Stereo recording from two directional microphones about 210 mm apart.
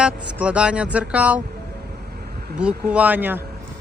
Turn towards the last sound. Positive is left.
turn(degrees=-10)  # may be behind; listen again after turning